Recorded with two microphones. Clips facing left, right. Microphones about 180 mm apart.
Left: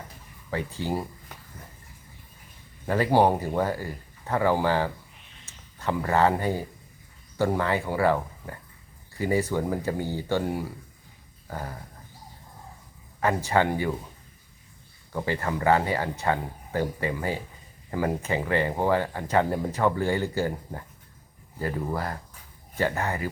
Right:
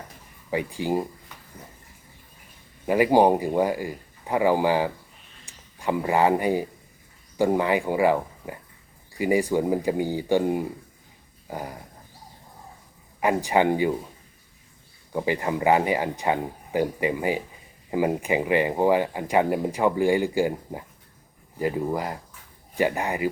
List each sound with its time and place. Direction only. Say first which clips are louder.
0.5 s speech: right 4 dB; 15° right (ahead or behind)
2.8 s speech: right 3 dB; 15° right (ahead or behind)
13.1 s speech: right 2 dB; 15° right (ahead or behind)
15.1 s speech: right 3 dB; 15° right (ahead or behind)